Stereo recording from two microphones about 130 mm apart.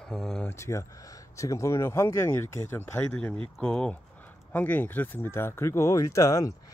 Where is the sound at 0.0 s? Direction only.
5° left (ahead or behind).